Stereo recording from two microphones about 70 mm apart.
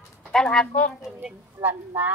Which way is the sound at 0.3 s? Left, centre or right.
Centre.